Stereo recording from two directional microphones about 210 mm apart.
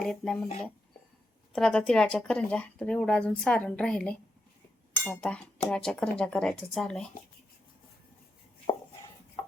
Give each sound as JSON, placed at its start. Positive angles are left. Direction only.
{"t": 0.0, "sound": "speech", "side_deg": 0}
{"t": 1.5, "sound": "speech", "side_deg": 5}
{"t": 8.7, "sound": "chopping", "side_deg": 25}